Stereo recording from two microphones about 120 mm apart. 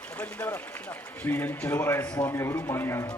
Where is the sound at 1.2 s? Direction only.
15° left (ahead or behind).